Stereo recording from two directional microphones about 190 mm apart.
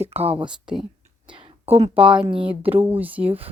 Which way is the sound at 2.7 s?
10° right (ahead or behind).